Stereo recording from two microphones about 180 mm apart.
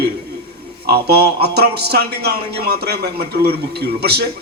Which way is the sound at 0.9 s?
65° right (ahead or behind).